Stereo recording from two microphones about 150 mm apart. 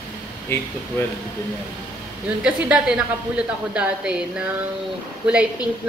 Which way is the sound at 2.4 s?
10° right (ahead or behind).